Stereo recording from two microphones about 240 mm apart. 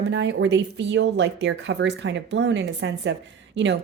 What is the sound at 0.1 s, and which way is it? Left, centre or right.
Speech, right.